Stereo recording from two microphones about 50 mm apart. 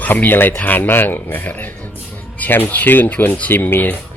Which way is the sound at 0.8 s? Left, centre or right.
Left.